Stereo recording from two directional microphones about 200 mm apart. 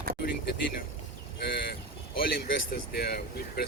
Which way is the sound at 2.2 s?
50° left (ahead or behind).